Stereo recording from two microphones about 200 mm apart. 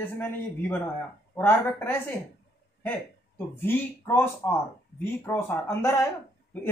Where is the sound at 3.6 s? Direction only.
10° left (ahead or behind).